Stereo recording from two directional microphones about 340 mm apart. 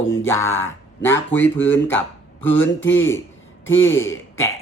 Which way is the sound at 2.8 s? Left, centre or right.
Left.